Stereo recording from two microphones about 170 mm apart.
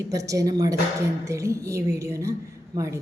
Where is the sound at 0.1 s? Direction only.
20° right (ahead or behind).